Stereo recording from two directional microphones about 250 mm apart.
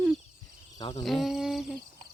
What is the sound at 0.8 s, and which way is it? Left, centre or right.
Speech, left.